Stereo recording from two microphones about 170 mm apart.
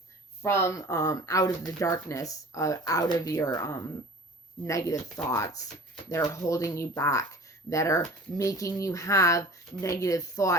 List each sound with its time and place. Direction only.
0.4 s a woman's voice: 15° left (ahead or behind)